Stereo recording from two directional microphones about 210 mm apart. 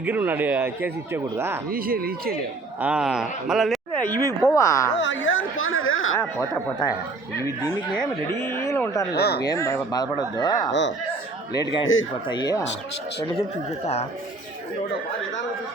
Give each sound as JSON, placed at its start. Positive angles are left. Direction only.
{"t": 0.0, "sound": "speech", "side_deg": -10}
{"t": 1.7, "sound": "speech", "side_deg": -45}
{"t": 2.8, "sound": "speech", "side_deg": -5}
{"t": 4.0, "sound": "speech", "side_deg": 10}
{"t": 4.9, "sound": "speech", "side_deg": 60}
{"t": 7.3, "sound": "speech", "side_deg": 15}
{"t": 9.1, "sound": "speech", "side_deg": 50}
{"t": 9.5, "sound": "speech", "side_deg": 15}
{"t": 10.7, "sound": "speech", "side_deg": 60}
{"t": 12.3, "sound": "speech", "side_deg": 20}
{"t": 13.8, "sound": "speech", "side_deg": 30}